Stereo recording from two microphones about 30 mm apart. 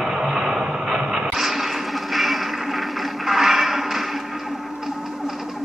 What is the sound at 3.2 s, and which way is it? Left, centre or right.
Music, centre.